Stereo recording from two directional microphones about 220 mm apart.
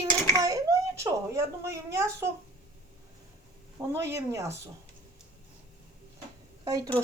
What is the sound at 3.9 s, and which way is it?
Speech, 10° right (ahead or behind).